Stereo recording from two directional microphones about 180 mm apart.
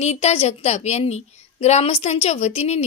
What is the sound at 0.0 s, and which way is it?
A woman's voice, 35° left (ahead or behind).